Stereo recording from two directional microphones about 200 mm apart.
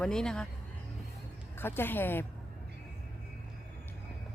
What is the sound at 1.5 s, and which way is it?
Speech, 10° left (ahead or behind).